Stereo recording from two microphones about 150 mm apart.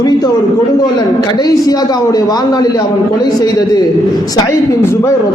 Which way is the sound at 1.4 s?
25° left (ahead or behind).